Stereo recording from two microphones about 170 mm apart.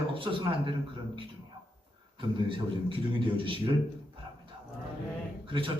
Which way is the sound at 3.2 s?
30° right (ahead or behind).